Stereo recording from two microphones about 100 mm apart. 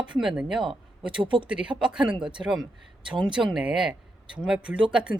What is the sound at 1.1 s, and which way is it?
Speech, 55° right (ahead or behind).